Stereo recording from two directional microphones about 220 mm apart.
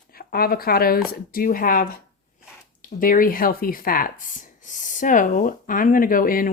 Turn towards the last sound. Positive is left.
turn(degrees=40)  # may be behind; listen again after turning